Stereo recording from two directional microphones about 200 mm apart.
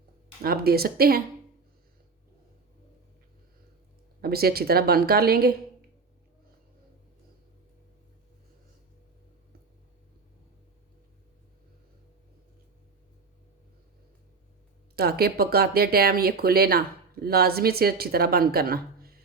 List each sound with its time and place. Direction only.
0.4 s speech: 50° right (ahead or behind)
4.2 s speech: 50° right (ahead or behind)
14.9 s speech: 50° right (ahead or behind)